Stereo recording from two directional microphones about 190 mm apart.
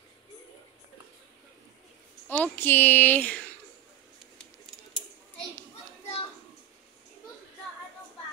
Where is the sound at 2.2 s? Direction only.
10° left (ahead or behind).